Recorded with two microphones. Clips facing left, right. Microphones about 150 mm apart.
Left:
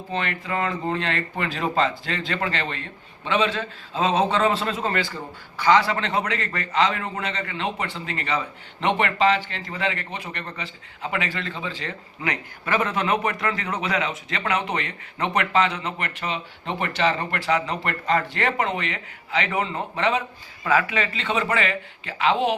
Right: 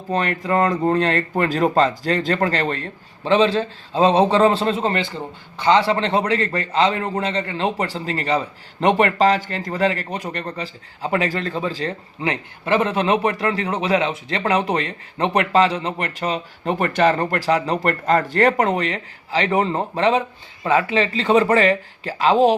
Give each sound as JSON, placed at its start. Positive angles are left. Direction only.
{"t": 0.1, "sound": "speech", "side_deg": -40}